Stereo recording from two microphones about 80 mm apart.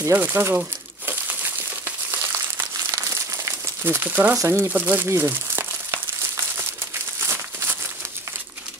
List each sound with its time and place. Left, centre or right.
0.2 s speech: right
1.0 s crumpling: right
3.8 s speech: right
4.4 s speech: right
4.7 s speech: centre
5.0 s crumpling: right